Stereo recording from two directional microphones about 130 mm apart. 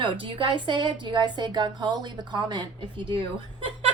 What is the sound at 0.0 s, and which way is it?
A woman's voice, 45° right (ahead or behind).